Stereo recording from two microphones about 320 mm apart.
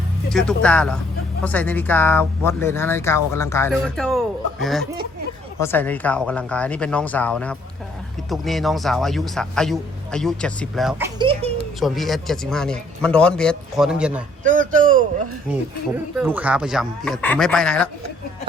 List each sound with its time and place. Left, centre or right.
0.3 s a man's voice: centre
11.2 s a sound: centre
11.8 s a man's voice: centre
14.7 s speech: right
16.1 s a man's voice: centre